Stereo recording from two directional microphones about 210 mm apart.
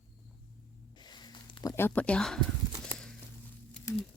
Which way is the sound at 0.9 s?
20° left (ahead or behind).